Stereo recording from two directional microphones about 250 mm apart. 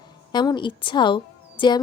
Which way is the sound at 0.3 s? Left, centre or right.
Centre.